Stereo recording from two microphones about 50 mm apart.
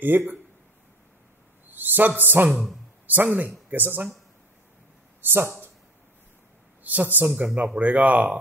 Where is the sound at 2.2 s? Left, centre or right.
Right.